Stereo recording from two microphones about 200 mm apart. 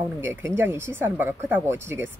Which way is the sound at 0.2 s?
10° right (ahead or behind).